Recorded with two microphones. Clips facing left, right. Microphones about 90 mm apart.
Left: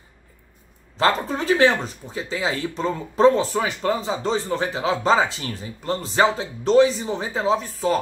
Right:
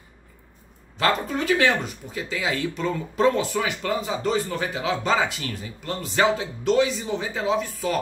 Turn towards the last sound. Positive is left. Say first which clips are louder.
# left 3 dB
turn(degrees=35)  # may be behind; listen again after turning